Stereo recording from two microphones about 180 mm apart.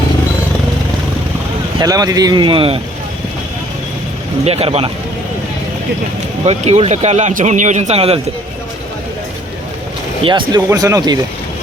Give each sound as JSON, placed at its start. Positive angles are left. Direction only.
{"t": 1.8, "sound": "speech", "side_deg": -20}
{"t": 4.4, "sound": "speech", "side_deg": -35}
{"t": 6.4, "sound": "speech", "side_deg": -35}
{"t": 10.2, "sound": "speech", "side_deg": -25}